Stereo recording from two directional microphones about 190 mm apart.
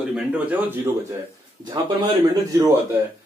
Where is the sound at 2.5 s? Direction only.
15° right (ahead or behind).